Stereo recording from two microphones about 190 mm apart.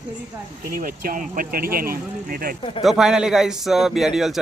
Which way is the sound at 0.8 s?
45° right (ahead or behind).